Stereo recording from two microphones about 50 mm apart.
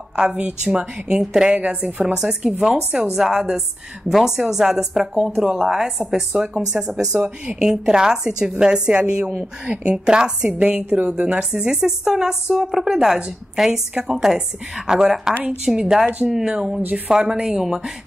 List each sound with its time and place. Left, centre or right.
0.1 s a woman's voice: right
1.6 s a woman's voice: right
2.1 s a woman's voice: centre
7.2 s a woman's voice: right
7.5 s a woman's voice: centre